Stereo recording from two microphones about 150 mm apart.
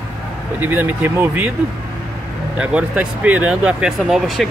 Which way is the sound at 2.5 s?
5° right (ahead or behind).